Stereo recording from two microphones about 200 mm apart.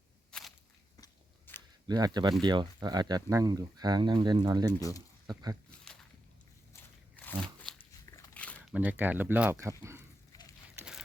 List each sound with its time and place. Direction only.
0.3 s walk: 5° left (ahead or behind)
1.0 s biting: 10° left (ahead or behind)
1.9 s speech: 20° right (ahead or behind)
4.8 s speech: 15° left (ahead or behind)
5.2 s speech: 20° right (ahead or behind)
5.8 s a sound: 5° left (ahead or behind)
7.2 s biting: 5° left (ahead or behind)
8.0 s dog: 10° left (ahead or behind)
8.7 s speech: 10° right (ahead or behind)